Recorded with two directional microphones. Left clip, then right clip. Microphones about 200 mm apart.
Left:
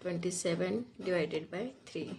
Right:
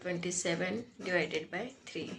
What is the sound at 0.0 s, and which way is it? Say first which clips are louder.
Speech: even; 55° left (ahead or behind).